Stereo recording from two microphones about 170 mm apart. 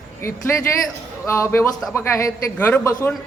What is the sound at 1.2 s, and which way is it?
A woman's voice, 15° left (ahead or behind).